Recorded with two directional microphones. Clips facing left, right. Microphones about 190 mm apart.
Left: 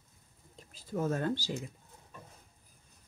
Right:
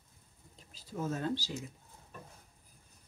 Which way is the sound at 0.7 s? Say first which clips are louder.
Left 4 dB; 50° left (ahead or behind).